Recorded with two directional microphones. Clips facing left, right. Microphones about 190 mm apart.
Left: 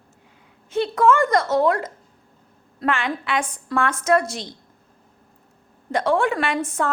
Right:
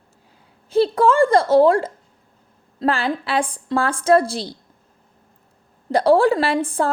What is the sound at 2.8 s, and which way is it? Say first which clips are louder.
A woman's voice: right 3 dB; 35° right (ahead or behind).